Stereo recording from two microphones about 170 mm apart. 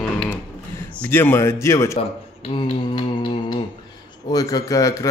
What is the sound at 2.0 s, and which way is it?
Speech, 35° left (ahead or behind).